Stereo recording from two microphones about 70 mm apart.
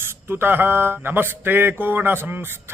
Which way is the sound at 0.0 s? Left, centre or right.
Right.